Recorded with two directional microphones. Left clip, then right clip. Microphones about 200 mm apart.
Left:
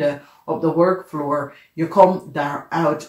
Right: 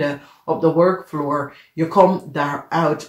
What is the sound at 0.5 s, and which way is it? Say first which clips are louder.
Speech: right 2 dB; 40° right (ahead or behind).